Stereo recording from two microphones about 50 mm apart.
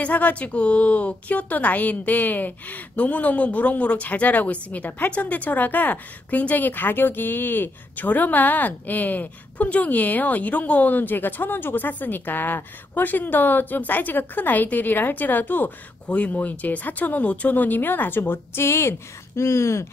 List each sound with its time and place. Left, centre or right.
0.0 s a woman's voice: left